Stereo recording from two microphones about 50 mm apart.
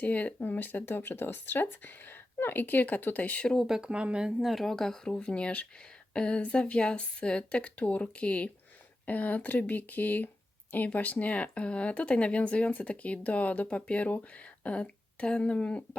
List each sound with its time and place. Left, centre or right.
0.0 s speech: left
3.8 s speech: right
4.4 s speech: centre
5.1 s speech: left